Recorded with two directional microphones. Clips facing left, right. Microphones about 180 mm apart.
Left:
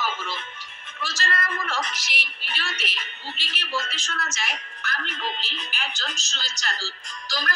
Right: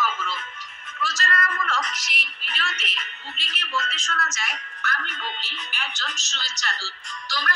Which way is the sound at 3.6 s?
30° left (ahead or behind).